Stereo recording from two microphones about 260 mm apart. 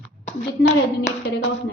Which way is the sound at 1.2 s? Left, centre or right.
Left.